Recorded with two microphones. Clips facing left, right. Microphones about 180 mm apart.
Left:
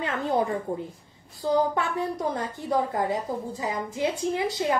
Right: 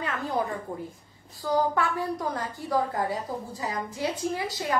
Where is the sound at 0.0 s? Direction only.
25° left (ahead or behind).